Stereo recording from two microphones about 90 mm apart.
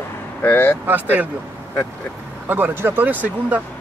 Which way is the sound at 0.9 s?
20° right (ahead or behind).